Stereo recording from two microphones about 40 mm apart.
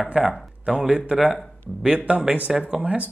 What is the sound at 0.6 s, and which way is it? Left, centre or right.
Speech, right.